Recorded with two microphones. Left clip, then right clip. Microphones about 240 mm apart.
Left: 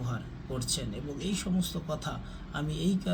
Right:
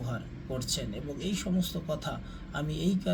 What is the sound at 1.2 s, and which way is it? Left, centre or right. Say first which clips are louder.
Speech: even; centre.